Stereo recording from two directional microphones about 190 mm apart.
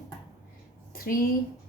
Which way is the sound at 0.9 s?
50° left (ahead or behind).